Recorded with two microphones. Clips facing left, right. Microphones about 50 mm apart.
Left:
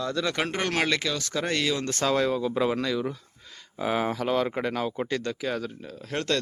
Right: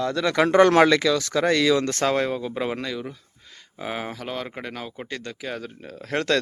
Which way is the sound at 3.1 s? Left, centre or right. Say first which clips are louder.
Left 1 dB; centre.